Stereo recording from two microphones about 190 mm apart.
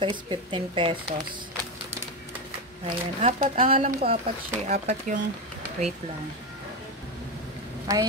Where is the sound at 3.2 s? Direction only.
40° right (ahead or behind).